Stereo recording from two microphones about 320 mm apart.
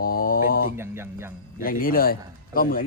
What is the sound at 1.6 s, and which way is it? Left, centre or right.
Mantra, left.